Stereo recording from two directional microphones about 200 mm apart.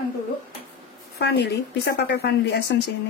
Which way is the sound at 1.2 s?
55° left (ahead or behind).